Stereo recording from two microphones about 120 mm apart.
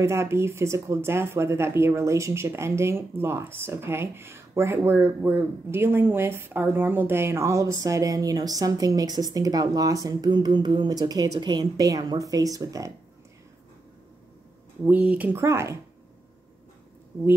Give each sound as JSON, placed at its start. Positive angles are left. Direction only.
{"t": 0.0, "sound": "speech", "side_deg": -20}
{"t": 14.9, "sound": "speech", "side_deg": -10}
{"t": 15.4, "sound": "speech", "side_deg": -25}